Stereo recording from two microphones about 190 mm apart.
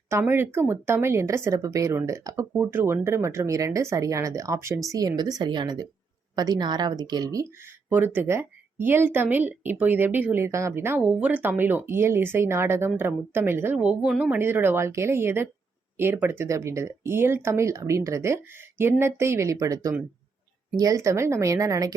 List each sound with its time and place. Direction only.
0.1 s a woman's voice: 10° right (ahead or behind)